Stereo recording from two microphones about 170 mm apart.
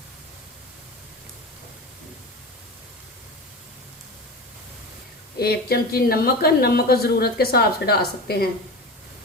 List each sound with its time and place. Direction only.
5.4 s speech: 65° left (ahead or behind)